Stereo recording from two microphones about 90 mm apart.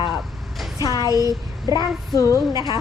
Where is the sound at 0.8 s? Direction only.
40° left (ahead or behind).